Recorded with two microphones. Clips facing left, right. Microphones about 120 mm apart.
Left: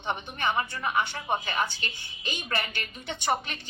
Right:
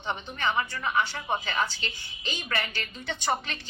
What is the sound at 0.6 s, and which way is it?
Speech, 30° left (ahead or behind).